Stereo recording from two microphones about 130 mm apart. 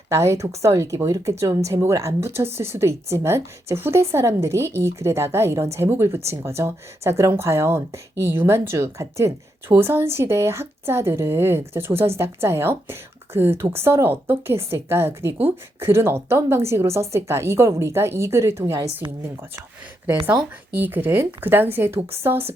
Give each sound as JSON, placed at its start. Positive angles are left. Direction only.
{"t": 0.1, "sound": "speech", "side_deg": -25}
{"t": 20.7, "sound": "speech", "side_deg": -15}